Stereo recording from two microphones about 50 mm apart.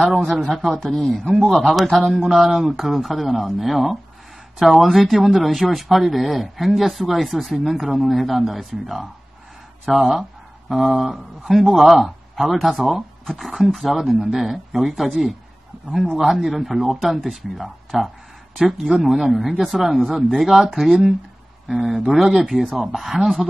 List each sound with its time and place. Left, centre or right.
0.6 s speech: centre
2.1 s speech: centre
2.4 s speech: centre